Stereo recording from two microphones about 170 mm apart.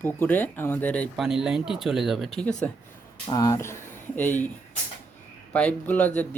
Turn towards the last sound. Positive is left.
turn(degrees=10)  # may be behind; listen again after turning